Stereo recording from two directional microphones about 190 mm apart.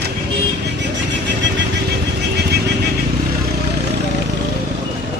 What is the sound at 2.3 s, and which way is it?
Vehicle, 60° right (ahead or behind).